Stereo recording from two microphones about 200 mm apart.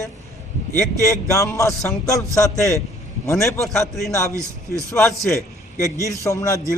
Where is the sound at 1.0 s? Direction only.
15° left (ahead or behind).